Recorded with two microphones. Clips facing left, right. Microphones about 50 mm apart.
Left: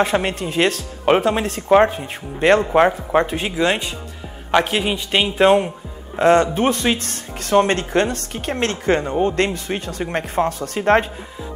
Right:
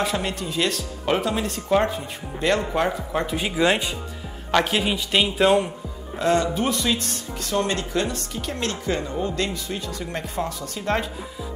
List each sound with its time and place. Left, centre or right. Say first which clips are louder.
0.0 s speech: left 6 dB; left
3.5 s speech: left 1 dB; centre
4.5 s a man's voice: left 3 dB; centre
6.1 s speech: left 7 dB; left